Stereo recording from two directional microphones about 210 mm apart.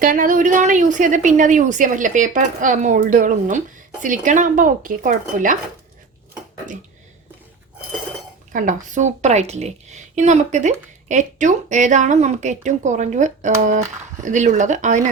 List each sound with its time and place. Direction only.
0.0 s a woman's voice: 40° right (ahead or behind)
8.5 s a woman's voice: 35° right (ahead or behind)